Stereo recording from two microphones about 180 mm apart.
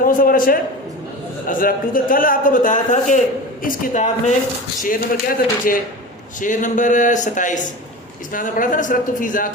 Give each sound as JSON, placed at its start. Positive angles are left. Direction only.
{"t": 0.0, "sound": "a man's voice", "side_deg": 50}